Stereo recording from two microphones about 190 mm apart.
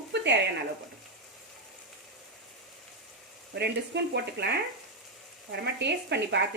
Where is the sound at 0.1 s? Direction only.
65° right (ahead or behind).